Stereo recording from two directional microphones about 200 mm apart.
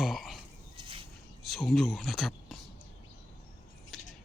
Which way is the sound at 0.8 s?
25° right (ahead or behind).